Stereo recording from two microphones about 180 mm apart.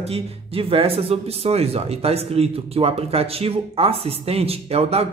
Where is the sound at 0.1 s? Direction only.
30° right (ahead or behind).